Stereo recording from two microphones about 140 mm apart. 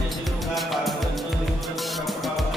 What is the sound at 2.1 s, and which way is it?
Music, centre (ahead or behind).